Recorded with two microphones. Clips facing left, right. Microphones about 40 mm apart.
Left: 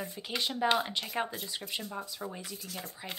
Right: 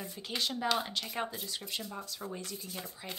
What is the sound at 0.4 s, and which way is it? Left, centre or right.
Speech, centre.